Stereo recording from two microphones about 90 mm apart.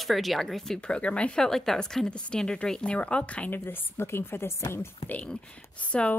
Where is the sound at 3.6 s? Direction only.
25° left (ahead or behind).